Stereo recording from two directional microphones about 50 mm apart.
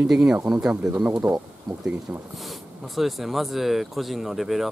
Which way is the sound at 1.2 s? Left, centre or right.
Right.